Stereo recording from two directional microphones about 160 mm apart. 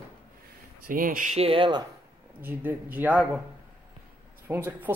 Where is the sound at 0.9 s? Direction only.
60° right (ahead or behind).